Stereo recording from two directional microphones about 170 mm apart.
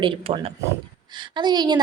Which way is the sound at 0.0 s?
30° right (ahead or behind).